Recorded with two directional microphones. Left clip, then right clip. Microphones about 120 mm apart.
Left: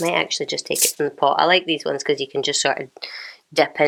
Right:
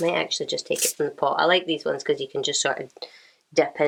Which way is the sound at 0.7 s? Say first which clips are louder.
Left 4 dB; 20° left (ahead or behind).